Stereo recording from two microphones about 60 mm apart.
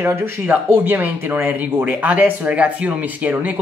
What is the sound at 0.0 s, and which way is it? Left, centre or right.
Speech, right.